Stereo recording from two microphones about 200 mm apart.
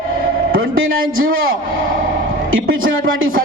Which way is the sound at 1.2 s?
90° right.